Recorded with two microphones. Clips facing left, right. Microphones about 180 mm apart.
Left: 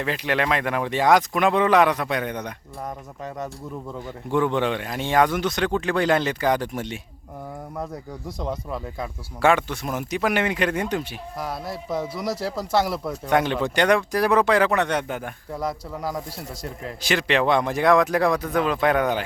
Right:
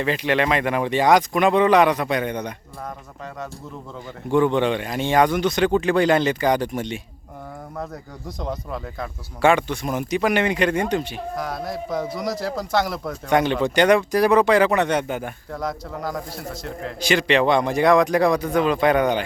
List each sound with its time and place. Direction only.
0.0 s speech: centre (ahead or behind)
4.3 s speech: centre (ahead or behind)
8.4 s speech: 5° left (ahead or behind)